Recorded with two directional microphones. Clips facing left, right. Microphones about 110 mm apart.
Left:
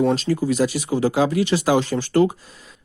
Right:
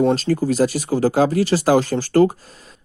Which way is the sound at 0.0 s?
40° right (ahead or behind).